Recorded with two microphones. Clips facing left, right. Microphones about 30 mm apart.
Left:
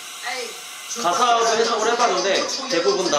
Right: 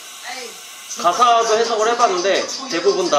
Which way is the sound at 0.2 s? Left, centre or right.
Centre.